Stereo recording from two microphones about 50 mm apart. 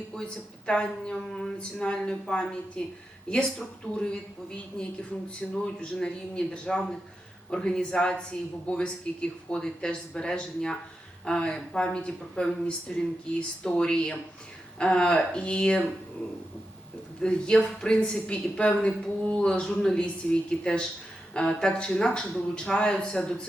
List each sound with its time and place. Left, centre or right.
0.1 s a man's voice: centre
17.2 s a man's voice: centre